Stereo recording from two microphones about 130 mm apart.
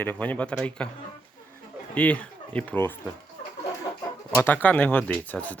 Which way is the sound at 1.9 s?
10° left (ahead or behind).